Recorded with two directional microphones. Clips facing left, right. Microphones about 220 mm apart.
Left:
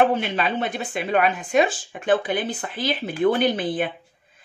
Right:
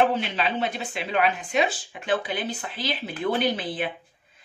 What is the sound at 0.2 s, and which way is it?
Speech, 50° left (ahead or behind).